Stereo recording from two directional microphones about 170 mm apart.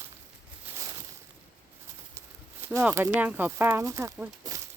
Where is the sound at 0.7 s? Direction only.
20° right (ahead or behind).